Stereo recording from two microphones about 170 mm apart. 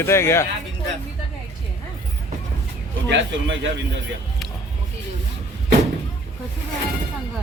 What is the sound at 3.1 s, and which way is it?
Speech, 90° right.